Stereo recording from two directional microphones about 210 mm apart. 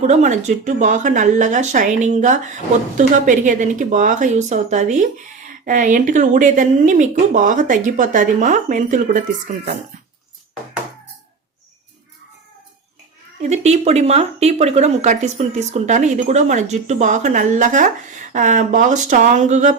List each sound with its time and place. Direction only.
0.0 s speech: 35° right (ahead or behind)
13.4 s speech: 30° right (ahead or behind)